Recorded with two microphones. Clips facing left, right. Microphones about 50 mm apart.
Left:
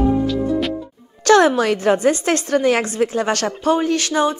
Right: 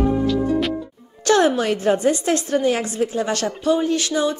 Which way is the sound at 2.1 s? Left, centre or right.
Left.